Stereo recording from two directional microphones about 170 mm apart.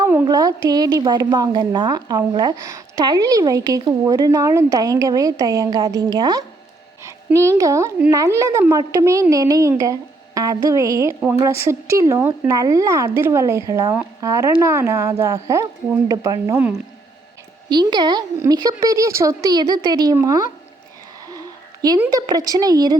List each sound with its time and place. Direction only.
0.0 s a sound: 10° right (ahead or behind)
0.3 s a woman's voice: 20° right (ahead or behind)
17.7 s a woman's voice: 25° right (ahead or behind)